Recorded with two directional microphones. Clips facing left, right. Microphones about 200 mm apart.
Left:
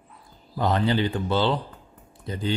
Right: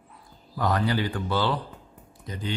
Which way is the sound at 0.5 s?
25° left (ahead or behind).